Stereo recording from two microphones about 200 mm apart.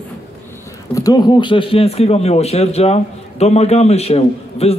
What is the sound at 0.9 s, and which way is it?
Speech, 20° left (ahead or behind).